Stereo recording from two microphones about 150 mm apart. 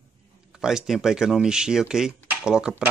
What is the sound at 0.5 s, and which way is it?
Speech, 5° right (ahead or behind).